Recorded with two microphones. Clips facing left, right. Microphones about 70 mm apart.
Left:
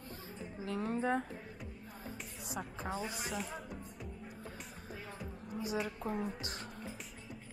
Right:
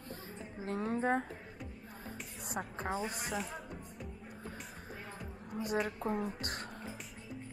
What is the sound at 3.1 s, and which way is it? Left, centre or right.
Speech, centre.